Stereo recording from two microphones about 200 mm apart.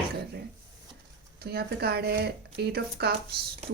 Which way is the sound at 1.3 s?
55° right (ahead or behind).